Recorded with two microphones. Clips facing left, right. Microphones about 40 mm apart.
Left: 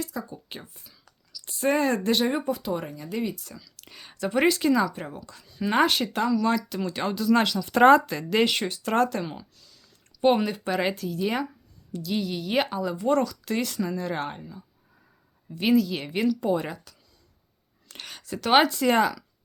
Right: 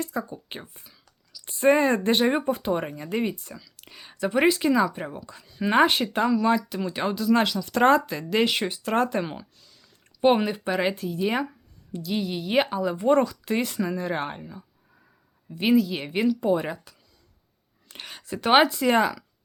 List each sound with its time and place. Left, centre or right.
0.0 s speech: right
3.5 s speech: centre
7.6 s speech: centre
7.9 s speech: centre
9.0 s speech: right
13.0 s speech: right; by 19.2 s centre